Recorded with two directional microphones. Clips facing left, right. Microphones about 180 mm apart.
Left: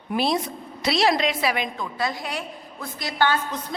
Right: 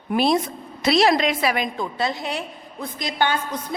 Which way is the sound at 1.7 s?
25° right (ahead or behind).